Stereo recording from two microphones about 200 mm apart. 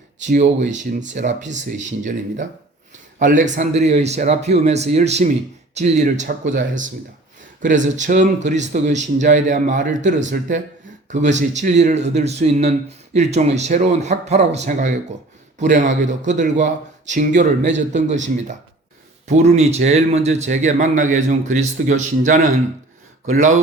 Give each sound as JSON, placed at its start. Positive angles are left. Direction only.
{"t": 0.2, "sound": "a man's voice", "side_deg": -35}